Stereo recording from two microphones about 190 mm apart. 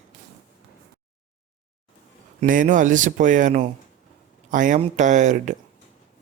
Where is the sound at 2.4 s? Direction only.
45° right (ahead or behind).